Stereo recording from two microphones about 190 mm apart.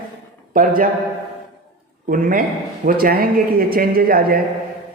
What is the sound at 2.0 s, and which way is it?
A man's voice, 45° right (ahead or behind).